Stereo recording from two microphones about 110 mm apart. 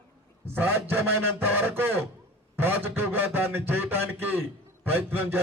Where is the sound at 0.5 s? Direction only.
20° right (ahead or behind).